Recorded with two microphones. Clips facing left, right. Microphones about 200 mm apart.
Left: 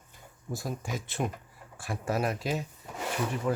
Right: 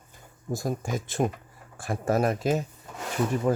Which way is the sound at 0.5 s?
45° right (ahead or behind).